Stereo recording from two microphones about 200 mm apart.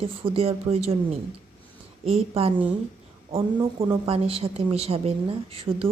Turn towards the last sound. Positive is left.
turn(degrees=-30)  # may be behind; listen again after turning